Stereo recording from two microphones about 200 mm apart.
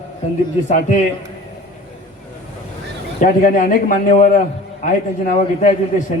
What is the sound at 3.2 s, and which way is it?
A man's voice, 40° left (ahead or behind).